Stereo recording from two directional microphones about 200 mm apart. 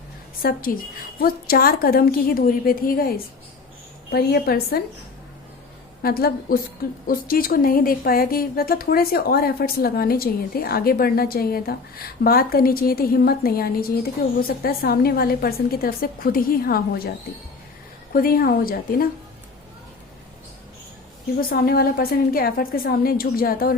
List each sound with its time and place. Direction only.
0.4 s a woman's voice: 45° left (ahead or behind)
6.0 s a woman's voice: 50° left (ahead or behind)
18.1 s a woman's voice: 45° left (ahead or behind)
21.5 s a woman's voice: 50° left (ahead or behind)